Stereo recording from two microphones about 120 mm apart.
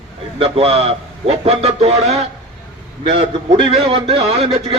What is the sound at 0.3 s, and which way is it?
A man's voice, 55° right (ahead or behind).